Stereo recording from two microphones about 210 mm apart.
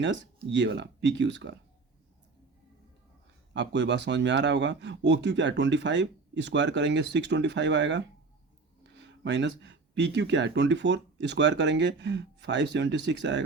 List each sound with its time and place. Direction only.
0.0 s speech: 60° right (ahead or behind)
3.5 s speech: 55° right (ahead or behind)